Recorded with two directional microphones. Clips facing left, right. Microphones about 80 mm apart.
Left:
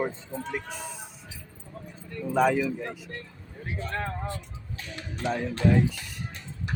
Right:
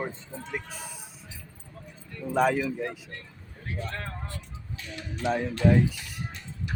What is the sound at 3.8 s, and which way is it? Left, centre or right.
Speech, left.